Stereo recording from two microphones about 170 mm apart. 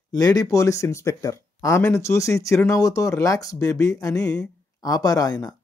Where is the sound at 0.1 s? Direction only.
20° left (ahead or behind).